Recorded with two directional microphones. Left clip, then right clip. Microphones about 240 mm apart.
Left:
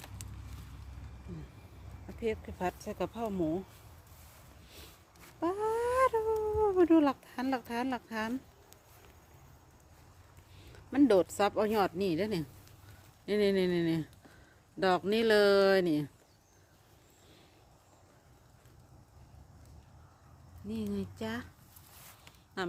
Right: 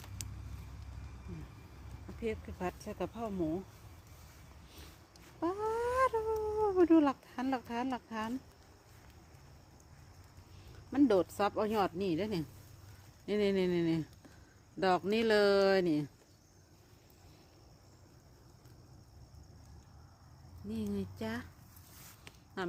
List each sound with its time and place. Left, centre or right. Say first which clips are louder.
0.2 s vehicle: right 3 dB; right
2.2 s speech: left 4 dB; centre
5.4 s a sound: left 3 dB; centre
10.9 s speech: left 3 dB; centre
20.9 s speech: left 2 dB; centre
22.6 s a sound: left 2 dB; centre